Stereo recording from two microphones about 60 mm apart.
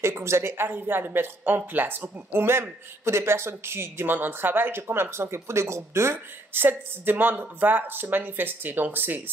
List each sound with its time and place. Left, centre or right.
0.0 s speech: right